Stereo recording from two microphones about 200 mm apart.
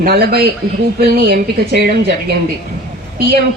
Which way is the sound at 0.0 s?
50° right (ahead or behind).